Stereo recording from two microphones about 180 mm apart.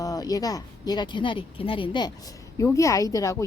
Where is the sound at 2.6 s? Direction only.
15° left (ahead or behind).